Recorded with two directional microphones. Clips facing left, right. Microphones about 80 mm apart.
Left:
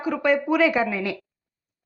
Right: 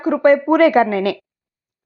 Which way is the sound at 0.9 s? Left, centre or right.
Right.